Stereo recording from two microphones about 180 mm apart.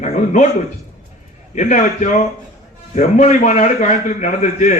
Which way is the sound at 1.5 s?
40° left (ahead or behind).